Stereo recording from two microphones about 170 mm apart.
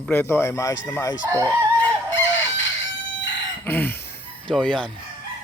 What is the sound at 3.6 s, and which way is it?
Chicken, 10° left (ahead or behind).